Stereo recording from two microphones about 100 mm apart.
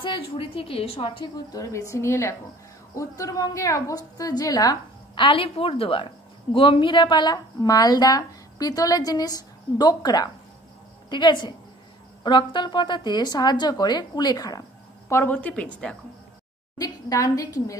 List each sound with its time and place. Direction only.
0.0 s a woman's voice: 60° left (ahead or behind)
1.5 s a woman's voice: 35° left (ahead or behind)
5.1 s a woman's voice: 60° left (ahead or behind); by 14.6 s 45° left (ahead or behind)
15.0 s a woman's voice: 25° left (ahead or behind)
15.3 s a woman's voice: 15° left (ahead or behind)
16.7 s a woman's voice: 35° left (ahead or behind)